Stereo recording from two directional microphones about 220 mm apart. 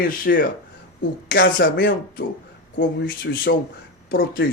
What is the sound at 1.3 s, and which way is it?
Speech, 55° left (ahead or behind).